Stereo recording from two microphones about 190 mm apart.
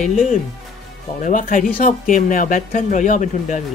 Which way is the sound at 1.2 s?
45° left (ahead or behind).